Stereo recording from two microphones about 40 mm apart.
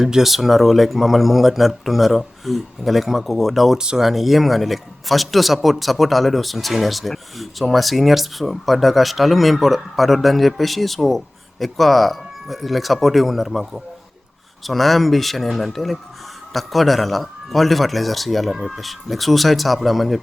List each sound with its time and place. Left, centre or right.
0.0 s speech: centre
3.8 s speech: centre
4.0 s speech: centre